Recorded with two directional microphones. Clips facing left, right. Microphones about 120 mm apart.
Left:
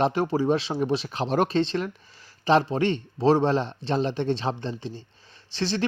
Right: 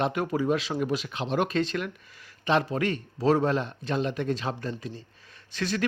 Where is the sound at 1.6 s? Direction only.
30° left (ahead or behind).